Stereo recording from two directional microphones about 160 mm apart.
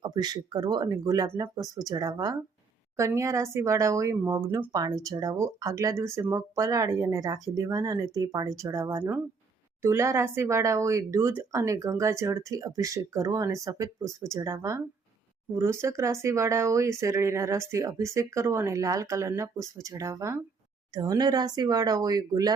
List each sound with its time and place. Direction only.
0.0 s speech: 25° right (ahead or behind)